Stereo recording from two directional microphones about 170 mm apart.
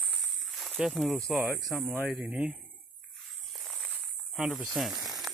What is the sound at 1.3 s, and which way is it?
Speech, 5° right (ahead or behind).